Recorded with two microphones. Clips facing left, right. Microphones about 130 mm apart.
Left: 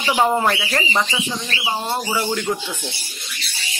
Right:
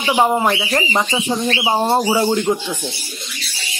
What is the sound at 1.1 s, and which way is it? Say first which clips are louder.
Speech: right 7 dB; 35° right (ahead or behind).